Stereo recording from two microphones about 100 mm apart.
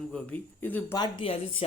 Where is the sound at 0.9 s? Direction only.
45° left (ahead or behind).